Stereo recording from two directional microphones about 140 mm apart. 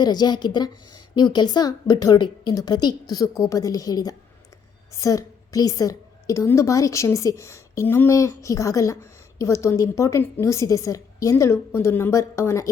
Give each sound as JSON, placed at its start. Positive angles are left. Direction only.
{"t": 0.0, "sound": "a woman's voice", "side_deg": 30}